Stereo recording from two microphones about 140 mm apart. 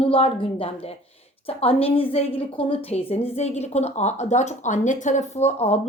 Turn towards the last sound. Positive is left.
turn(degrees=50)  # may be behind; listen again after turning